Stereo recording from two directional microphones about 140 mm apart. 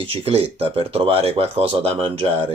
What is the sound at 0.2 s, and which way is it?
Speech, 45° right (ahead or behind).